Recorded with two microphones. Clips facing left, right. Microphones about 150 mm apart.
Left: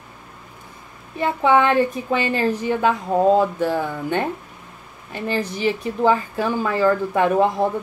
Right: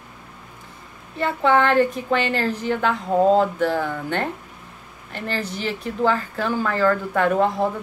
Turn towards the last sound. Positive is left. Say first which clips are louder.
# left 2 dB
turn(degrees=15)  # may be behind; listen again after turning